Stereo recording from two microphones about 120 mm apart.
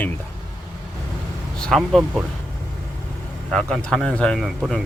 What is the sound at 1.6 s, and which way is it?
Speech, centre (ahead or behind).